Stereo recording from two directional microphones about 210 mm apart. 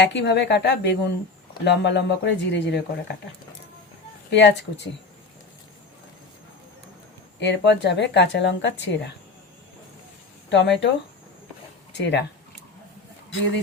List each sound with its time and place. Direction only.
0.0 s speech: 55° left (ahead or behind)
4.3 s speech: 55° left (ahead or behind)
7.3 s speech: 55° left (ahead or behind)
10.5 s speech: 55° left (ahead or behind)
11.9 s speech: 55° left (ahead or behind)